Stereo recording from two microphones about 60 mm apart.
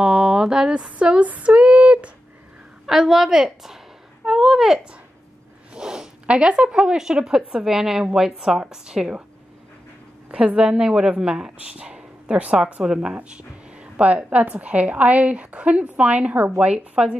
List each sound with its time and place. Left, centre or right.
0.0 s female singing: centre
2.9 s a sound: centre
5.8 s speech: centre
10.3 s speech: centre